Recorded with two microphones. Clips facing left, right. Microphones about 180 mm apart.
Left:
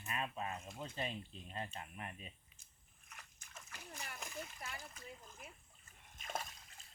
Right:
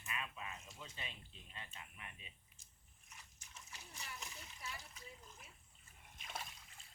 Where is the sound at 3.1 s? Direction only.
60° left (ahead or behind).